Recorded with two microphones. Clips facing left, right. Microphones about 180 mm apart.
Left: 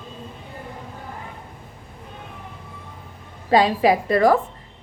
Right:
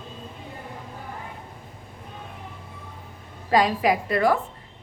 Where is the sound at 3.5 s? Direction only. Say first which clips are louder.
Left 4 dB; 30° left (ahead or behind).